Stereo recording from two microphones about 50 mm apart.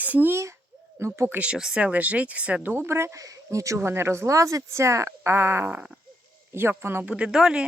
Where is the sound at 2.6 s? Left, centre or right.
Right.